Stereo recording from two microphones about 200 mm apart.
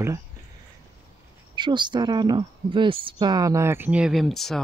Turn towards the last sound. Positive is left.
turn(degrees=0)  # may be behind; listen again after turning